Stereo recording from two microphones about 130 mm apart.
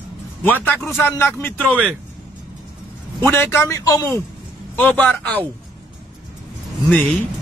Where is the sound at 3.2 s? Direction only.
20° left (ahead or behind).